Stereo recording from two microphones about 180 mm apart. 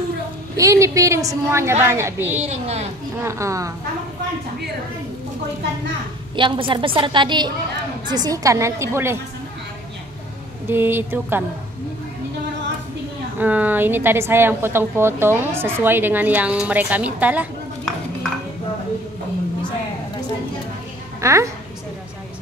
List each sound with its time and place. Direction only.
0.6 s a woman's voice: 15° right (ahead or behind)
2.3 s a woman's voice: 40° right (ahead or behind)
3.2 s a woman's voice: 15° right (ahead or behind)
6.3 s a woman's voice: 30° right (ahead or behind)
10.7 s a woman's voice: 10° right (ahead or behind)
13.4 s a woman's voice: 10° right (ahead or behind)
21.2 s a woman's voice: 15° right (ahead or behind)